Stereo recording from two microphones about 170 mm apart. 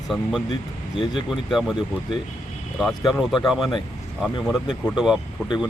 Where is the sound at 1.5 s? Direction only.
Centre (ahead or behind).